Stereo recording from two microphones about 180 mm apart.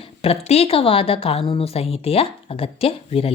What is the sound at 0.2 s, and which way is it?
Speech, 35° left (ahead or behind).